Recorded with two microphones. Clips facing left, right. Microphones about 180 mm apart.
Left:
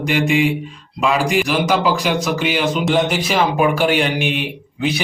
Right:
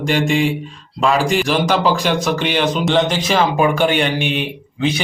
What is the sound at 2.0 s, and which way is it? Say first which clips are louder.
A man's voice: right 1 dB; 5° left (ahead or behind).